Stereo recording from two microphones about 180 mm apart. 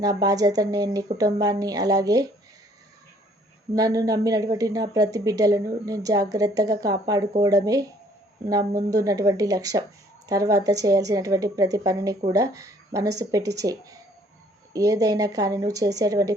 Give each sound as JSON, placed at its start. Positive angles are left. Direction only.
{"t": 0.0, "sound": "speech", "side_deg": -20}
{"t": 3.8, "sound": "speech", "side_deg": -20}